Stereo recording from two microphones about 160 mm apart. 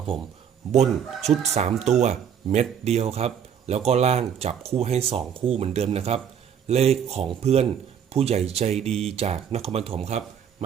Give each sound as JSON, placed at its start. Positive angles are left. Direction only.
{"t": 0.7, "sound": "speech", "side_deg": -45}